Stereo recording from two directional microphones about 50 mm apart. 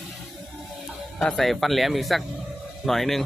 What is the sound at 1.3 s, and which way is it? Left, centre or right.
A man's voice, centre.